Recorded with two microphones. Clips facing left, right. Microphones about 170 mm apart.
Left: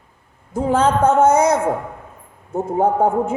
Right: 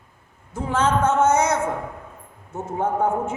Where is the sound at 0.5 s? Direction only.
35° left (ahead or behind).